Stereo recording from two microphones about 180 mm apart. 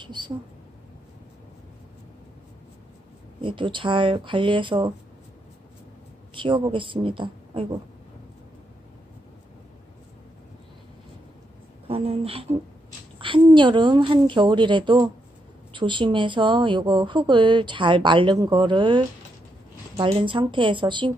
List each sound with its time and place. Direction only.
0.0 s a sound: 25° right (ahead or behind)
3.3 s a woman's voice: 30° right (ahead or behind)
6.3 s a woman's voice: 25° right (ahead or behind)
11.9 s a woman's voice: 35° right (ahead or behind)